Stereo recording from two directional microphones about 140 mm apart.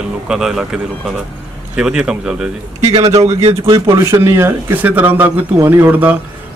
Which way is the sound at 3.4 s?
45° right (ahead or behind).